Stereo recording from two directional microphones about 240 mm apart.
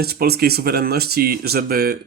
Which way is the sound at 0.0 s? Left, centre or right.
Right.